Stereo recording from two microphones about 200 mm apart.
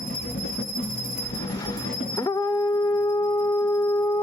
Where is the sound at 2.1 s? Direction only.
15° left (ahead or behind).